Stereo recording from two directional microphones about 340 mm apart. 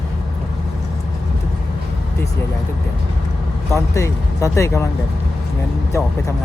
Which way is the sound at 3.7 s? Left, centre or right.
Centre.